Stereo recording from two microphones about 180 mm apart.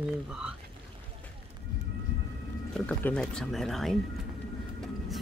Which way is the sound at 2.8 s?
5° left (ahead or behind).